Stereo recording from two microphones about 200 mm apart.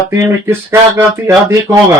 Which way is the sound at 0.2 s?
10° right (ahead or behind).